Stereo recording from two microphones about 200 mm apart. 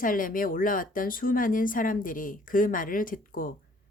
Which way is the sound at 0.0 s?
45° left (ahead or behind).